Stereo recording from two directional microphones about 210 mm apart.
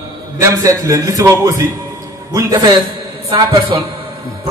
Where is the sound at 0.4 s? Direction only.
15° right (ahead or behind).